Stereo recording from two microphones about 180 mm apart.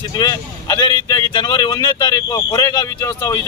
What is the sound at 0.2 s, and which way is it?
Speech, 20° left (ahead or behind).